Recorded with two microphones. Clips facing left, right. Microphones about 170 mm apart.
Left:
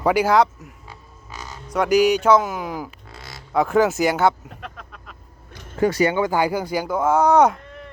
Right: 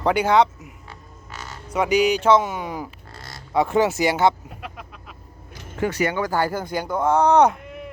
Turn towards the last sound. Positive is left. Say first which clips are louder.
# right 4 dB
turn(degrees=-10)  # may be behind; listen again after turning